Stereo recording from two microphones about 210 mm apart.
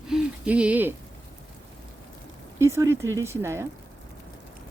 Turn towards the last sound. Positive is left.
turn(degrees=-15)  # may be behind; listen again after turning